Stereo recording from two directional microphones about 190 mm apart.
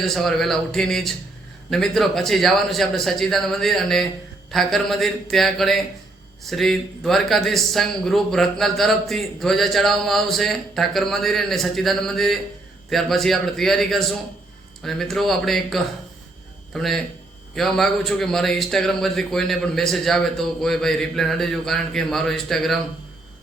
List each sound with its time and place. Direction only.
0.0 s speech: centre (ahead or behind)